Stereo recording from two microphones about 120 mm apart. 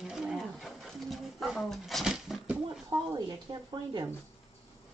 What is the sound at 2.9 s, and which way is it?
Speech, 25° right (ahead or behind).